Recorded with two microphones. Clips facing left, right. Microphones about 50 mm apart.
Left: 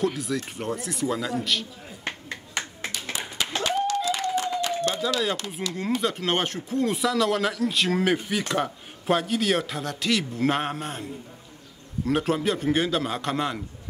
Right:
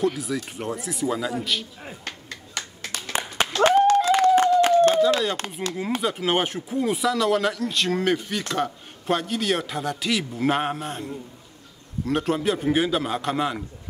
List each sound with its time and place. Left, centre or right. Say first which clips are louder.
0.0 s a man's voice: right 2 dB; centre
2.0 s music: left 3 dB; left
2.9 s clapping: right 4 dB; right
3.6 s a sound: right 9 dB; right
5.4 s speech: right 1 dB; right
6.0 s a man's voice: right 4 dB; centre